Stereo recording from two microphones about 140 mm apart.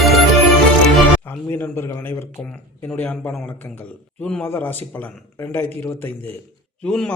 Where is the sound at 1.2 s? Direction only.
15° left (ahead or behind).